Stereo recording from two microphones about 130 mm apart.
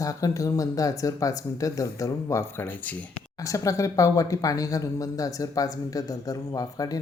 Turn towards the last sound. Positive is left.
turn(degrees=30)  # may be behind; listen again after turning